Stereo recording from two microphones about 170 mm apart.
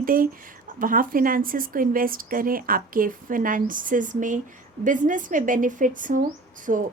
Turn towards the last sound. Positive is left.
turn(degrees=-45)  # may be behind; listen again after turning